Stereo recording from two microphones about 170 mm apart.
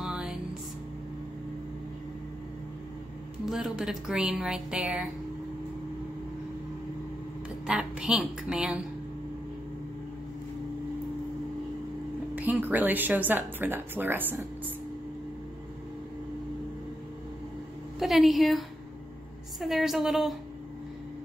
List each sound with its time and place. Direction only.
0.0 s music: 5° right (ahead or behind)
3.4 s a woman's voice: centre (ahead or behind)
7.6 s a woman's voice: 5° right (ahead or behind)
12.4 s speech: 10° right (ahead or behind)
17.9 s a woman's voice: centre (ahead or behind)